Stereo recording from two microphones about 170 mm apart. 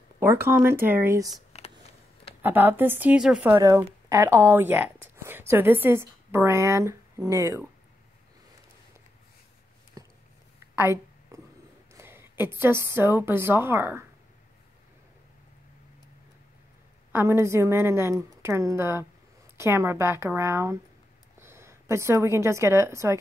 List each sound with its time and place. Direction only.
0.2 s a woman's voice: 15° right (ahead or behind)
1.5 s a sound: 40° left (ahead or behind)
2.4 s a woman's voice: 10° right (ahead or behind)
10.0 s a sound: 20° right (ahead or behind)
11.9 s a woman's voice: 15° right (ahead or behind)
17.1 s a woman's voice: 15° right (ahead or behind)